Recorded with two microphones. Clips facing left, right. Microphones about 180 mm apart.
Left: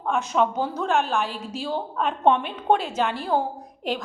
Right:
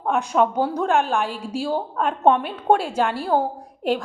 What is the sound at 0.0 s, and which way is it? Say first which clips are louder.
A woman's voice: right 3 dB; 15° right (ahead or behind).